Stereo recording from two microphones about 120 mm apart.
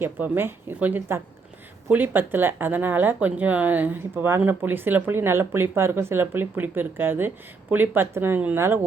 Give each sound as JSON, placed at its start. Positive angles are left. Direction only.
{"t": 0.0, "sound": "a woman's voice", "side_deg": -20}